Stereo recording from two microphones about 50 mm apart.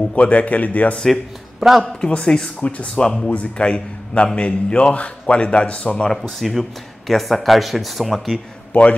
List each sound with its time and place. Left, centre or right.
0.1 s speech: left
0.9 s speech: centre
1.6 s a man's voice: centre
2.0 s speech: centre
3.3 s a man's voice: left
6.4 s speech: centre